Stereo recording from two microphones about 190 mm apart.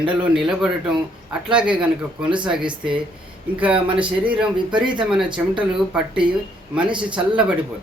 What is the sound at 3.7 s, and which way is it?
Speech, 25° right (ahead or behind).